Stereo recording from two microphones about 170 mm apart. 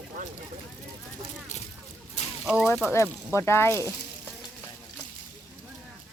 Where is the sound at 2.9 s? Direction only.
15° left (ahead or behind).